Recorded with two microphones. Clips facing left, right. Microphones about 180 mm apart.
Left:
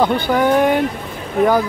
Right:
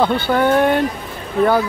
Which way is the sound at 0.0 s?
10° left (ahead or behind).